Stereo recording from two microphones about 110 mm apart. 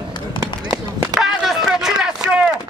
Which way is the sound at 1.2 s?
5° right (ahead or behind).